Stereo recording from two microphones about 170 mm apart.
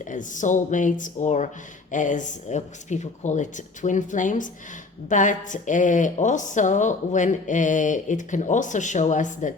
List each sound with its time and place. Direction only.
0.1 s speech: 50° left (ahead or behind)